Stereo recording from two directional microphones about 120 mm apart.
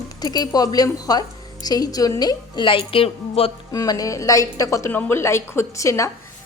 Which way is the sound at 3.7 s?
30° left (ahead or behind).